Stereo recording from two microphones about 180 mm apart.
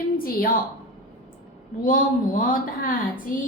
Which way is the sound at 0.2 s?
50° left (ahead or behind).